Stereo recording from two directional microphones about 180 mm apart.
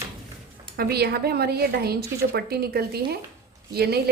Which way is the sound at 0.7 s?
60° right (ahead or behind).